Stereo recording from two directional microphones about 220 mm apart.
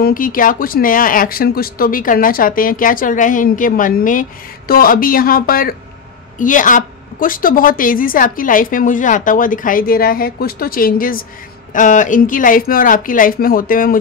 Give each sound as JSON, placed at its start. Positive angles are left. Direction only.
{"t": 0.0, "sound": "speech", "side_deg": 40}